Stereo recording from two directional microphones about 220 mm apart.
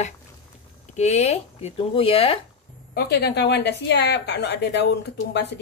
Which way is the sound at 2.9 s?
45° left (ahead or behind).